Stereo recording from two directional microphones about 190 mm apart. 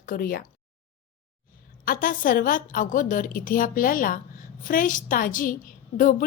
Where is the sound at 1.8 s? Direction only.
45° left (ahead or behind).